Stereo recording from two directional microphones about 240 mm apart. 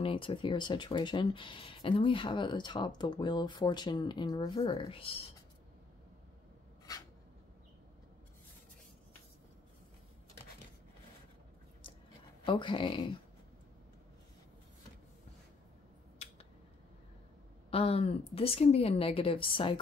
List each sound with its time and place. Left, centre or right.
0.0 s speech: left
6.9 s a sound: centre
12.4 s speech: centre
17.6 s speech: left